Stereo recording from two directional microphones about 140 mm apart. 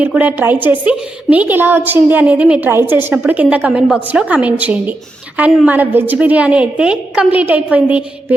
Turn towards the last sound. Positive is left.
turn(degrees=-10)  # may be behind; listen again after turning